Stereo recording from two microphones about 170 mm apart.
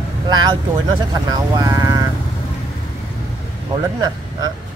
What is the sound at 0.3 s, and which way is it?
Speech, 25° right (ahead or behind).